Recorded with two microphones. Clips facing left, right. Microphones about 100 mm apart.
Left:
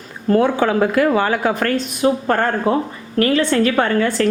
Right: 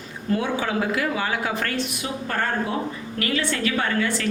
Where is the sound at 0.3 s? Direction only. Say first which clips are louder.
Left 9 dB; 50° left (ahead or behind).